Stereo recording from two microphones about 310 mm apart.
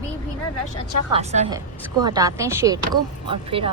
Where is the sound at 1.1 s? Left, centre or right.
Centre.